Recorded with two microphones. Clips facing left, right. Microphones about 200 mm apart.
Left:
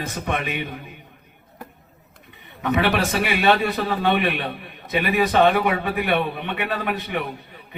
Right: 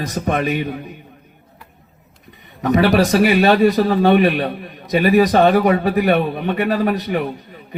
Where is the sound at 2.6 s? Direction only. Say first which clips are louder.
Right 7 dB; 40° right (ahead or behind).